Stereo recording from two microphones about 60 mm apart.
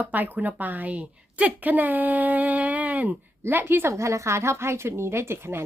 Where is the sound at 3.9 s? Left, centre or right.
Right.